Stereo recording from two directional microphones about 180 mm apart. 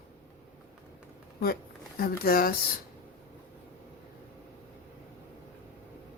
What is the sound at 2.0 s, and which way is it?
Speech, 55° left (ahead or behind).